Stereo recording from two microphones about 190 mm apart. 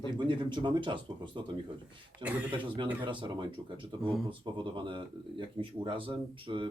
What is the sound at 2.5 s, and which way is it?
Speech, 25° right (ahead or behind).